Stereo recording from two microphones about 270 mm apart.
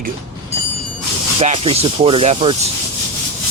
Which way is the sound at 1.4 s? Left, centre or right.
Right.